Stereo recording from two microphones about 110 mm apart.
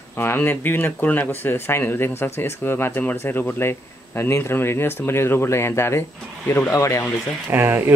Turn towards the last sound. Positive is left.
turn(degrees=-20)  # may be behind; listen again after turning